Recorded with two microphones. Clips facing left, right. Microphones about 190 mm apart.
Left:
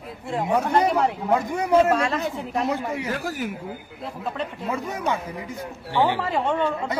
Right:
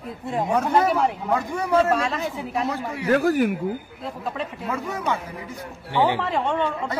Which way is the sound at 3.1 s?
60° right (ahead or behind).